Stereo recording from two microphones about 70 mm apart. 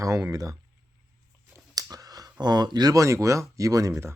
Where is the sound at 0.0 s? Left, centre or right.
Right.